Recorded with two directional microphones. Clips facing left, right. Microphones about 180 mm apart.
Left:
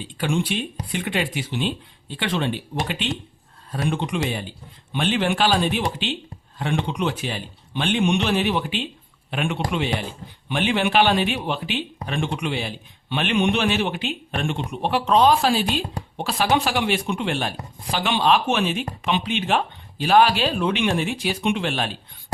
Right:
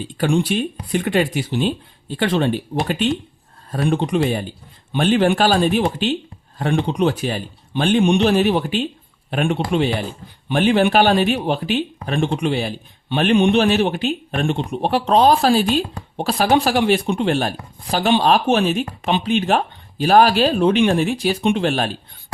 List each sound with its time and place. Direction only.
0.0 s a man's voice: 40° right (ahead or behind)